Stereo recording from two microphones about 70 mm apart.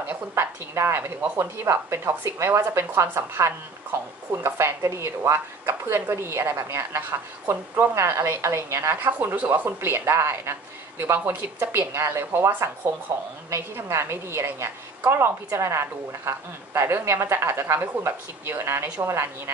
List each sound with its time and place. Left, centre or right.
0.1 s a woman's voice: right
5.7 s a woman's voice: right
7.0 s a woman's voice: right
7.9 s a woman's voice: right
9.0 s a woman's voice: right
11.0 s a woman's voice: right